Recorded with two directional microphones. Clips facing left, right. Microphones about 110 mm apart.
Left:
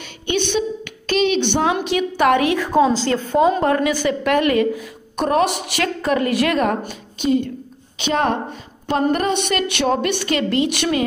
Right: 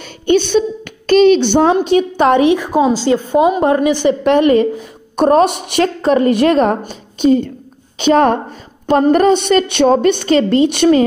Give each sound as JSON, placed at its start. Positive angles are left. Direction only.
{"t": 0.3, "sound": "a woman's voice", "side_deg": -40}